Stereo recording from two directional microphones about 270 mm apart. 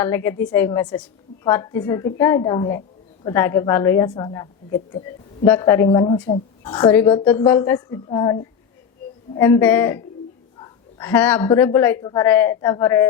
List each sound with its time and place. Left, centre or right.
0.0 s a woman's voice: centre